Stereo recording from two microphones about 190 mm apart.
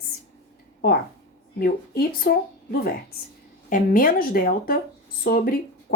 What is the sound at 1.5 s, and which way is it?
Speech, 55° left (ahead or behind).